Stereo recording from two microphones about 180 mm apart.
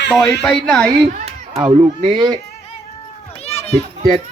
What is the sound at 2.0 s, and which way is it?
Speech, 25° right (ahead or behind).